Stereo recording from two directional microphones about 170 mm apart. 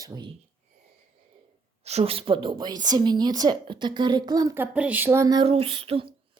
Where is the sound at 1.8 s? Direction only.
40° right (ahead or behind).